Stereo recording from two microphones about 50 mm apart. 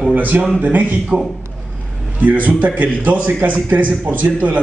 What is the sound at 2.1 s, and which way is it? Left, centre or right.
A man's voice, right.